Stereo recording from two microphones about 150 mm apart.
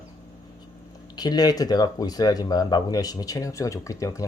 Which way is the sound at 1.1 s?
25° left (ahead or behind).